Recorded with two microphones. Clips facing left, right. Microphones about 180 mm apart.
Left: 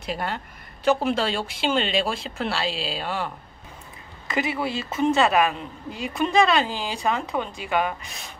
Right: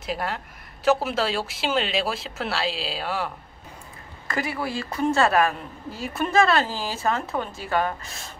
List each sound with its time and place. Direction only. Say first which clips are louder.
0.0 s speech: even; centre (ahead or behind)
4.3 s a woman's voice: left 2 dB; 20° left (ahead or behind)